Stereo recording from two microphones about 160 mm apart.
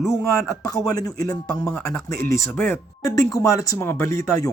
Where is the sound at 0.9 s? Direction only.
25° left (ahead or behind).